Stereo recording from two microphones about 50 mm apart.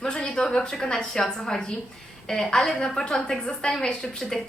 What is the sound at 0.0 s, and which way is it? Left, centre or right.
A woman's voice, centre.